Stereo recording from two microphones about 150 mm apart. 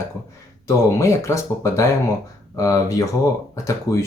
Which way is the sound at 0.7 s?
20° left (ahead or behind).